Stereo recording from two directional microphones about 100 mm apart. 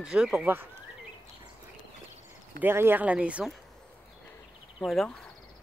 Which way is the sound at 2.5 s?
20° right (ahead or behind).